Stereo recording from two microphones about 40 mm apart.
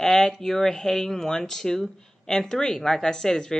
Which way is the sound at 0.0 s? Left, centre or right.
Centre.